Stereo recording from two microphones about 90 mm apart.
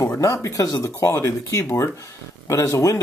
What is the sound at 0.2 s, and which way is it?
Speech, 35° left (ahead or behind).